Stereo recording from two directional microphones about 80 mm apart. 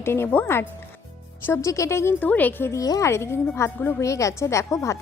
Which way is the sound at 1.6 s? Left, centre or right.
Left.